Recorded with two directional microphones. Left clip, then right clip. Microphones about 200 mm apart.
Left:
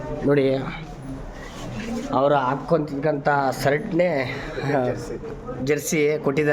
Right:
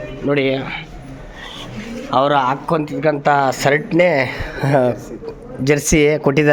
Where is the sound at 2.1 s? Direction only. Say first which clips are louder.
Right 5 dB; 25° right (ahead or behind).